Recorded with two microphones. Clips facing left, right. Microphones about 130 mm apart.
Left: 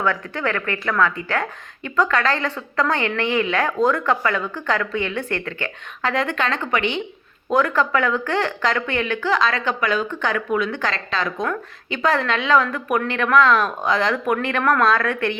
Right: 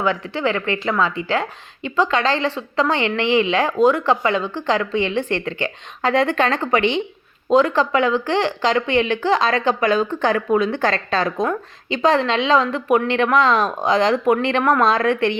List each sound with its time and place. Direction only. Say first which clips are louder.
0.0 s a woman's voice: right 2 dB; 15° right (ahead or behind)
6.1 s a woman's voice: right 5 dB; 35° right (ahead or behind)
7.5 s speech: right 3 dB; 15° right (ahead or behind)
9.0 s a woman's voice: right 3 dB; 30° right (ahead or behind)
10.9 s a woman's voice: right 4 dB; 40° right (ahead or behind)
12.0 s a woman's voice: right 3 dB; 25° right (ahead or behind)
14.9 s a woman's voice: right 4 dB; 30° right (ahead or behind)